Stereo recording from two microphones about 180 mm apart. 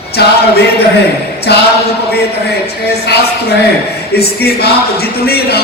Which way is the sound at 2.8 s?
60° left (ahead or behind).